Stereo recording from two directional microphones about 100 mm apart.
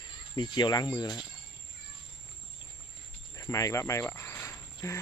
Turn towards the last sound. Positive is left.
turn(degrees=30)  # may be behind; listen again after turning